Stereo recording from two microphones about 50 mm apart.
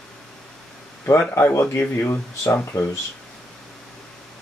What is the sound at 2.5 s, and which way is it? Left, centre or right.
Speech, left.